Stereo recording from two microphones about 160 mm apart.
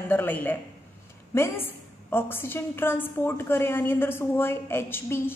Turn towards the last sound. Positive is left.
turn(degrees=15)  # may be behind; listen again after turning